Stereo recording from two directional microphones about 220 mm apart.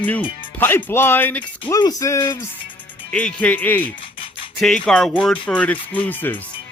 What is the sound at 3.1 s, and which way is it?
Speech, 5° left (ahead or behind).